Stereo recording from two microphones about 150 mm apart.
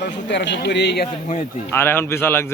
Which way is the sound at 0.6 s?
90° left.